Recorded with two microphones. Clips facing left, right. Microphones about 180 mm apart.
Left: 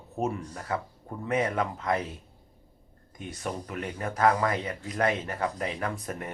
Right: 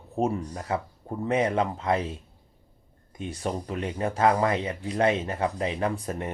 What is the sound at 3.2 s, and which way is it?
Speech, 30° right (ahead or behind).